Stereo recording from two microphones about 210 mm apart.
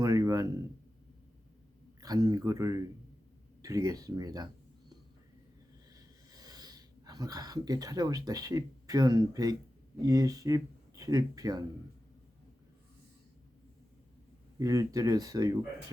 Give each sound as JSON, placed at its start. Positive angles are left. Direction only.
{"t": 0.0, "sound": "a sound", "side_deg": -15}
{"t": 2.0, "sound": "speech", "side_deg": -15}
{"t": 5.9, "sound": "speech", "side_deg": -20}
{"t": 14.6, "sound": "speech", "side_deg": -15}